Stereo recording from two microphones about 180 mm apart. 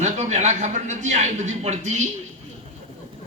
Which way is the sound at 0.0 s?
40° right (ahead or behind).